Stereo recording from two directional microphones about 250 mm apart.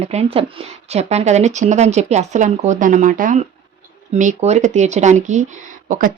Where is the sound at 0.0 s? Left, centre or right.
Right.